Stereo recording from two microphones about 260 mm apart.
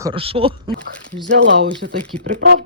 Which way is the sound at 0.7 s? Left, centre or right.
Centre.